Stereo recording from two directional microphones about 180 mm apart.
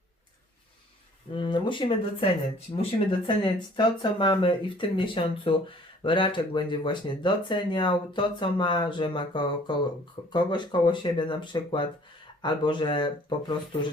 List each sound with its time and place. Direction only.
1.3 s speech: 25° left (ahead or behind)